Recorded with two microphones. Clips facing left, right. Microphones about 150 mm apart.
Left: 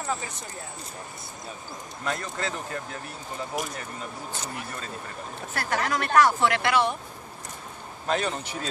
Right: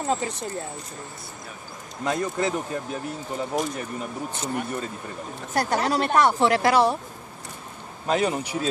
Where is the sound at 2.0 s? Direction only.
20° right (ahead or behind).